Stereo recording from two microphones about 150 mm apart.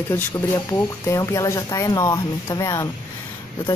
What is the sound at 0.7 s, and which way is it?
Speech, 20° left (ahead or behind).